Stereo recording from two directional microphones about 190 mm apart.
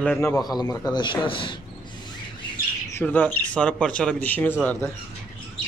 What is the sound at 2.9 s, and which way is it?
Speech, 10° left (ahead or behind).